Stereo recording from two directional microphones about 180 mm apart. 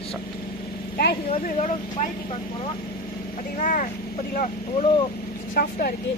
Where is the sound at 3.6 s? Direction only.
45° left (ahead or behind).